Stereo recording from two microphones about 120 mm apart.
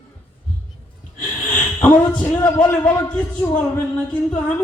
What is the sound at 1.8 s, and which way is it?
A man's voice, 10° left (ahead or behind).